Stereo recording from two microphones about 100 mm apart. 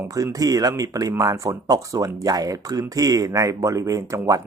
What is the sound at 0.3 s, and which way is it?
Speech, 35° right (ahead or behind).